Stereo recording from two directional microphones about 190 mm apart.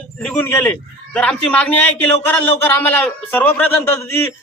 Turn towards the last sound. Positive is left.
turn(degrees=10)  # may be behind; listen again after turning